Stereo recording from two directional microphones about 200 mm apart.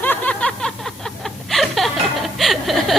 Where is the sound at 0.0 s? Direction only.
10° left (ahead or behind).